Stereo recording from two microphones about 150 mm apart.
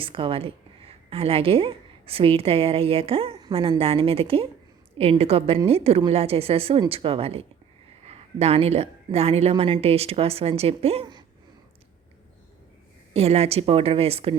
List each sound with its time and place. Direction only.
0.0 s a woman's voice: 35° right (ahead or behind)
13.1 s a woman's voice: 45° right (ahead or behind)